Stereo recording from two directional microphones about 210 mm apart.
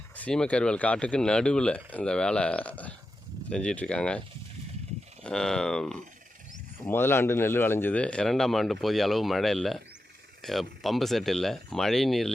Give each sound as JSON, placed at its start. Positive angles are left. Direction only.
{"t": 0.2, "sound": "speech", "side_deg": 5}
{"t": 5.2, "sound": "speech", "side_deg": 5}